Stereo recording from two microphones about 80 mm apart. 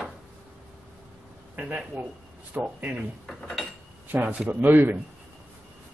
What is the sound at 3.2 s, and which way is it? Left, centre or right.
Cutlery, centre.